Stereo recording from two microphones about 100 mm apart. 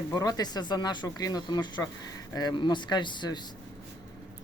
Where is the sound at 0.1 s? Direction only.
40° left (ahead or behind).